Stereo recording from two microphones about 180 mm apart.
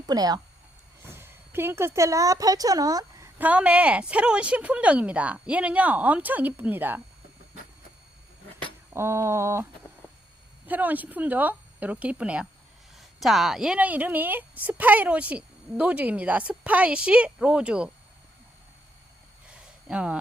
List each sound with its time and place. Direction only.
0.1 s a woman's voice: 20° right (ahead or behind)
3.3 s a woman's voice: 10° right (ahead or behind)
8.9 s a woman's voice: 15° right (ahead or behind)
10.7 s a woman's voice: 10° right (ahead or behind)
19.5 s a sound: 5° right (ahead or behind)